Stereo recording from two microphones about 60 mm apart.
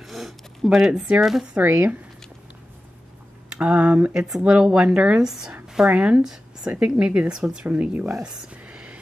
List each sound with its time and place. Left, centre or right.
0.0 s a sound: centre
0.7 s speech: centre
1.6 s speech: right
3.4 s speech: centre
6.2 s speech: centre
7.6 s speech: right
8.6 s whispering: right